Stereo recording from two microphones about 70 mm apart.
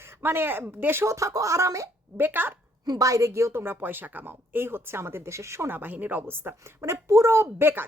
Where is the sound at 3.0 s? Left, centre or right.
Right.